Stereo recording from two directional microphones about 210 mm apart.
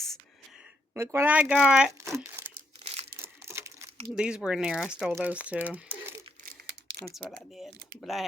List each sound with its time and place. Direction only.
0.9 s speech: 10° right (ahead or behind)
2.8 s crumpling: 30° right (ahead or behind)
3.2 s a sound: 10° right (ahead or behind)
4.1 s speech: 5° right (ahead or behind)
7.1 s speech: centre (ahead or behind)